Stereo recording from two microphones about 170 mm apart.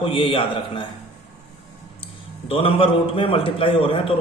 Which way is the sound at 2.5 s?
35° left (ahead or behind).